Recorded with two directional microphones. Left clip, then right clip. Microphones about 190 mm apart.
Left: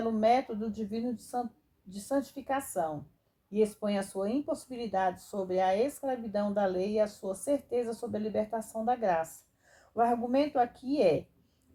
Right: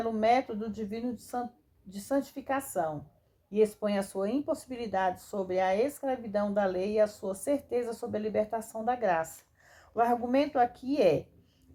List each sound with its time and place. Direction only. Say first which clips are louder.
0.0 s a woman's voice: even; 30° right (ahead or behind)